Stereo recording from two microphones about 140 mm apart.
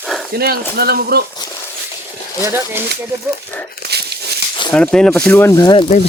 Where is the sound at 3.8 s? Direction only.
90° left.